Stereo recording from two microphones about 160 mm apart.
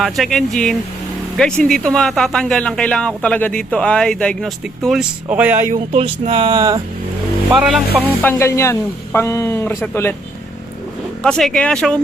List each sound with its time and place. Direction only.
0.0 s speech: centre (ahead or behind)
5.9 s speech: 40° right (ahead or behind)
7.5 s speech: centre (ahead or behind)
8.0 s speech: 15° left (ahead or behind)
11.2 s speech: 5° left (ahead or behind)